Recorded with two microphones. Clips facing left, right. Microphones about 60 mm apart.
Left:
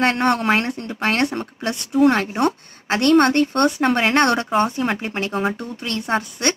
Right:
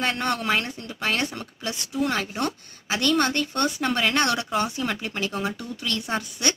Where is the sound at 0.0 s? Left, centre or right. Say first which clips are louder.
Left 7 dB; left.